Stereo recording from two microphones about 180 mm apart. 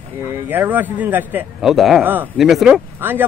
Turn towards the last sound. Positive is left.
turn(degrees=-10)  # may be behind; listen again after turning